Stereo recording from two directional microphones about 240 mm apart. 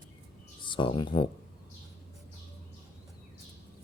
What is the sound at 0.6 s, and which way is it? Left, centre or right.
Speech, centre.